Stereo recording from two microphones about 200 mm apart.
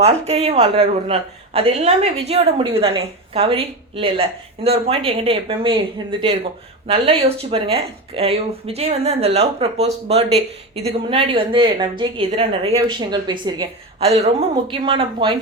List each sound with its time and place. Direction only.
0.0 s a woman's voice: 30° right (ahead or behind)